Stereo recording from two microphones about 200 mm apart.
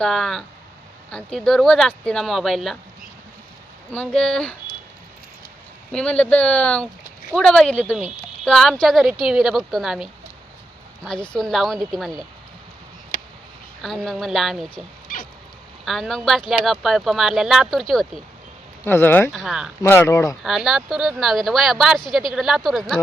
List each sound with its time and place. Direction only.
0.0 s speech: centre (ahead or behind)
3.9 s speech: 5° left (ahead or behind)
5.9 s speech: 5° left (ahead or behind)
13.8 s speech: centre (ahead or behind)
15.1 s cat: 45° left (ahead or behind)
15.8 s speech: centre (ahead or behind)
19.3 s speech: centre (ahead or behind)
19.9 s speech: 15° left (ahead or behind)
20.4 s speech: centre (ahead or behind)